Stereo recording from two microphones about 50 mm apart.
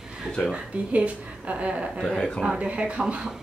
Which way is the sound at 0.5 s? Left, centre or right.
Right.